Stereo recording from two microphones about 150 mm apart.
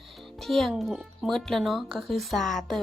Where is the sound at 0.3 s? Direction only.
Centre (ahead or behind).